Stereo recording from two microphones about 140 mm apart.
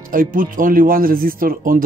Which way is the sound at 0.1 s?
80° right.